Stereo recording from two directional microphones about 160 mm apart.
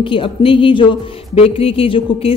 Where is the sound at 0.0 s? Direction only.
35° left (ahead or behind).